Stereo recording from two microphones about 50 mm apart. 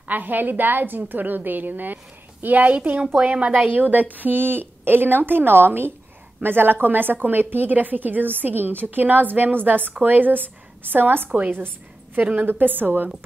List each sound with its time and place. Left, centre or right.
0.1 s a woman's voice: right